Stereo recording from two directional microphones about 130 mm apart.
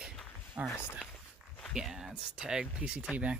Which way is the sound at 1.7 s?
5° right (ahead or behind).